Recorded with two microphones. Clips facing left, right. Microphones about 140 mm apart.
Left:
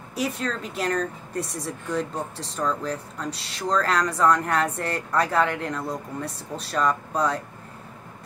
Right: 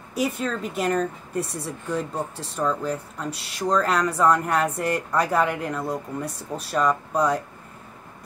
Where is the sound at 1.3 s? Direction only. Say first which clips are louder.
Right 1 dB; 35° right (ahead or behind).